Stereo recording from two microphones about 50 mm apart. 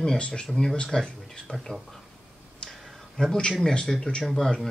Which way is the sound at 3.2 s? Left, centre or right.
Left.